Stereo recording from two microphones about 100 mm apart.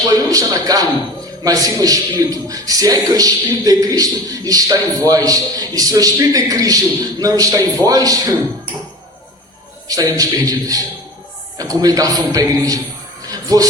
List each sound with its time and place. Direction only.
0.0 s a man's voice: 35° right (ahead or behind)
9.9 s a man's voice: 35° right (ahead or behind)
13.2 s music: 40° right (ahead or behind)